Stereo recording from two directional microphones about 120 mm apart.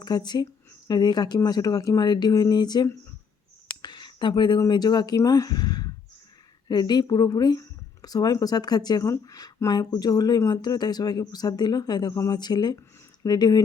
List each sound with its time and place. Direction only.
0.0 s speech: 35° left (ahead or behind)